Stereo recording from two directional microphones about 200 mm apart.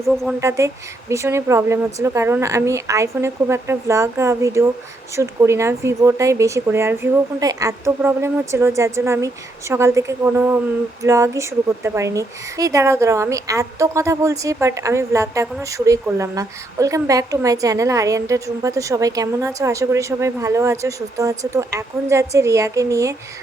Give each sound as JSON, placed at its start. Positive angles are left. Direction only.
{"t": 0.1, "sound": "speech", "side_deg": 0}
{"t": 0.3, "sound": "a woman's voice", "side_deg": -15}